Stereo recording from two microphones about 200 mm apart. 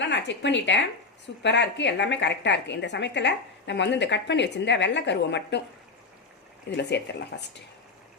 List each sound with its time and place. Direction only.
0.0 s a woman's voice: 65° left (ahead or behind)
6.7 s a woman's voice: 60° left (ahead or behind)